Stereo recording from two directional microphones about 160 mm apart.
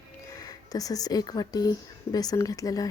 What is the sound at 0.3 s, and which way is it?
Speech, 20° left (ahead or behind).